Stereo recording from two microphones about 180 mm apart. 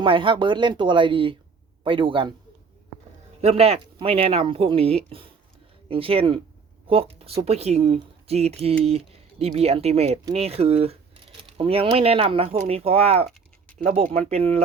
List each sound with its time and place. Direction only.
0.0 s speech: 30° right (ahead or behind)
3.4 s speech: 35° right (ahead or behind)